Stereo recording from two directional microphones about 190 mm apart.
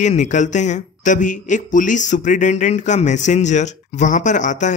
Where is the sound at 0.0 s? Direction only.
40° left (ahead or behind).